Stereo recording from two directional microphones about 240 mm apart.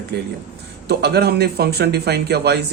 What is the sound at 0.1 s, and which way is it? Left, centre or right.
Speech, right.